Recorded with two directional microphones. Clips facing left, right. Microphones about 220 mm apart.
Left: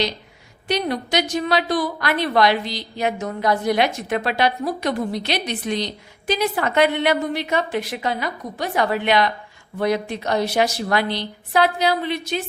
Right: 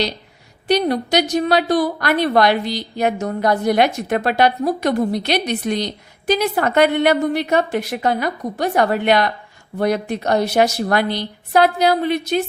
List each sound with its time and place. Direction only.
0.7 s a woman's voice: 40° right (ahead or behind); by 12.4 s 55° right (ahead or behind)